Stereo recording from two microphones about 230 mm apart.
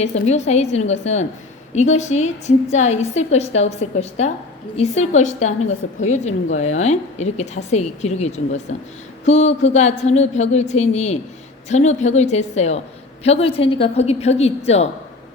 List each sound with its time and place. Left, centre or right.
0.0 s a woman's voice: left